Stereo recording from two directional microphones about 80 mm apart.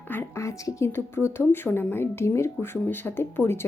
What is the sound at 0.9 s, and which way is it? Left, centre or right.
Speech, left.